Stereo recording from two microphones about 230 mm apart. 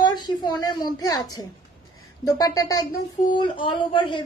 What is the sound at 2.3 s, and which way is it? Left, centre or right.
A man's voice, centre.